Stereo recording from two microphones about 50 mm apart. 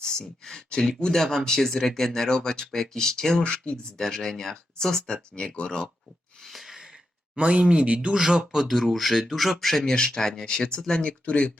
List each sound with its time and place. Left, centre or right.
0.0 s speech: centre
6.4 s a sound: centre
7.3 s speech: right
8.2 s speech: centre; by 11.5 s left